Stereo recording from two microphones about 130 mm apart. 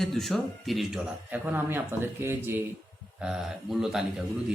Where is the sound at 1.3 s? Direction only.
15° right (ahead or behind).